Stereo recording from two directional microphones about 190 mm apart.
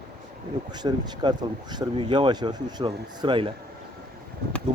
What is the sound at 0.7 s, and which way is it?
Speech, 20° right (ahead or behind).